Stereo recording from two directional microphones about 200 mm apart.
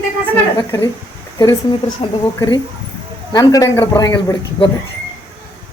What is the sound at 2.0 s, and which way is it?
Speech, 25° left (ahead or behind).